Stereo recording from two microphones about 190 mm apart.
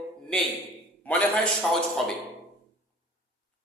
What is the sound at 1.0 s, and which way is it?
Speech, 5° left (ahead or behind).